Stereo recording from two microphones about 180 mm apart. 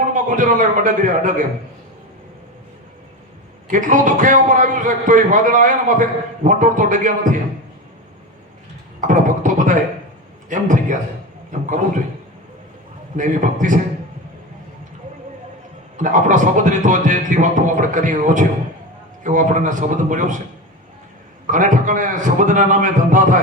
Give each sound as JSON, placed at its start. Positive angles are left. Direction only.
{"t": 0.1, "sound": "a man's voice", "side_deg": -45}
{"t": 3.7, "sound": "a man's voice", "side_deg": -45}
{"t": 9.0, "sound": "beatboxing", "side_deg": -45}
{"t": 10.5, "sound": "a man's voice", "side_deg": -45}
{"t": 13.1, "sound": "a man's voice", "side_deg": -45}
{"t": 16.0, "sound": "a man's voice", "side_deg": -45}
{"t": 21.4, "sound": "a man's voice", "side_deg": -45}